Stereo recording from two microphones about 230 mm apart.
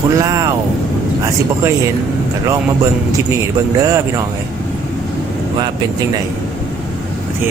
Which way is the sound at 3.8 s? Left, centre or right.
Centre.